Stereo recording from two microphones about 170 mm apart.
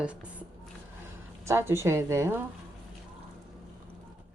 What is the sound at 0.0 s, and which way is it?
Speech, 5° right (ahead or behind).